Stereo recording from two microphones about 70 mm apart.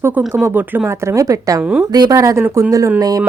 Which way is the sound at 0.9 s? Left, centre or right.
Right.